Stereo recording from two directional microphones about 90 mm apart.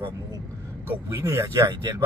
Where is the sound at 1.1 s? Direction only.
30° right (ahead or behind).